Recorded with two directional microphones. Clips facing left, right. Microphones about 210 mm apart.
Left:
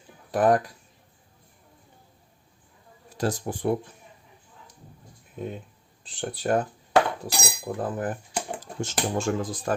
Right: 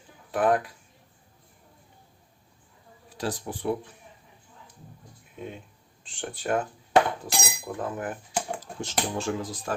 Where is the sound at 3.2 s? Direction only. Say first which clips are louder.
Left 4 dB; 45° left (ahead or behind).